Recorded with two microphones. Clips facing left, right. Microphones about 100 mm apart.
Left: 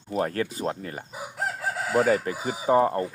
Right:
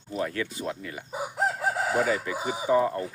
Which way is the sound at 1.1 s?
25° right (ahead or behind).